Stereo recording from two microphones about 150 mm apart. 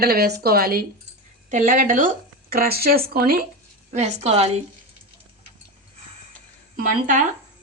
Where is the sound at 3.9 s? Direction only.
50° right (ahead or behind).